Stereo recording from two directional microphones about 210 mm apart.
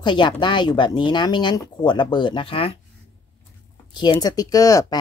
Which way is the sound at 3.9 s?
20° left (ahead or behind).